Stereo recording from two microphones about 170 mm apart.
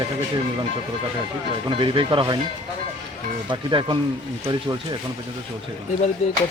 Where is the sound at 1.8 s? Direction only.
30° right (ahead or behind).